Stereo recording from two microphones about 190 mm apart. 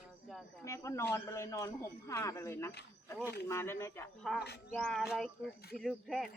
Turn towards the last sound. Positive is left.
turn(degrees=0)  # may be behind; listen again after turning